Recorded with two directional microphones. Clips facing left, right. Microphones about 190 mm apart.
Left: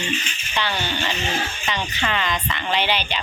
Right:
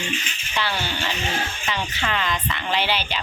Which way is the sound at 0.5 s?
5° right (ahead or behind).